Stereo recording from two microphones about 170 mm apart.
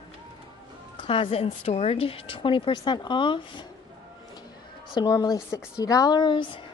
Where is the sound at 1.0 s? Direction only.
30° left (ahead or behind).